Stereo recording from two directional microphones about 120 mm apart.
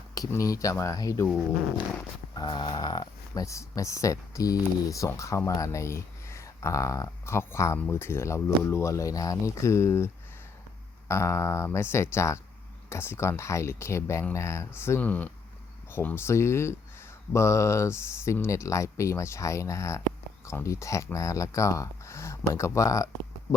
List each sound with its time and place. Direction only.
0.3 s speech: 25° left (ahead or behind)
2.3 s speech: 40° left (ahead or behind); by 10.1 s 20° left (ahead or behind)
11.1 s speech: 25° left (ahead or behind)